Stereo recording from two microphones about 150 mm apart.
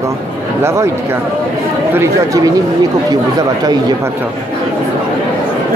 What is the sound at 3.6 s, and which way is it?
Speech, 25° right (ahead or behind).